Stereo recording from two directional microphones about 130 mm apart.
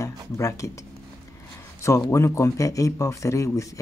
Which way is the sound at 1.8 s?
20° left (ahead or behind).